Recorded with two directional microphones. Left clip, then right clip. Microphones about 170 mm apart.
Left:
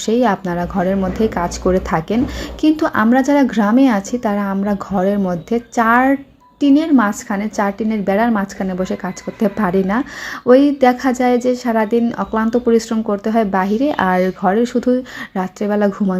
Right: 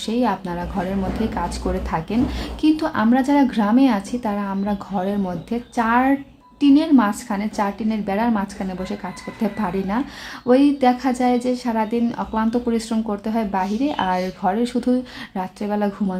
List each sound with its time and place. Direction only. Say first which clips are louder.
0.0 s a woman's voice: left 6 dB; 30° left (ahead or behind)